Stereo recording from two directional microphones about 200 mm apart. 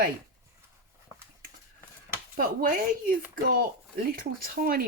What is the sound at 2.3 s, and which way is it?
Speech, 45° right (ahead or behind).